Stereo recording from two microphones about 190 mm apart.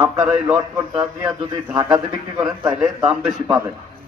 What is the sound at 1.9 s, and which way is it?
A man's voice, 15° right (ahead or behind).